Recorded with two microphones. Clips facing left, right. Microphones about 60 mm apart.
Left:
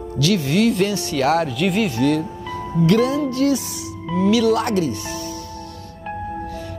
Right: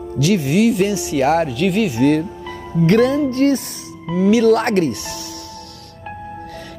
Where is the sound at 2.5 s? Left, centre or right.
Right.